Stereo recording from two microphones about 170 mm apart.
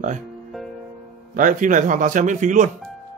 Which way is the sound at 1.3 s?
50° right (ahead or behind).